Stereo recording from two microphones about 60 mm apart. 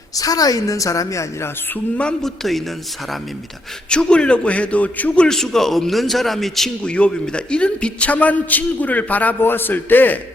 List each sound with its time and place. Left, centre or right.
0.2 s a woman's voice: left
2.2 s a man's voice: centre
3.8 s a man's voice: centre
5.4 s a man's voice: centre
6.8 s a man's voice: centre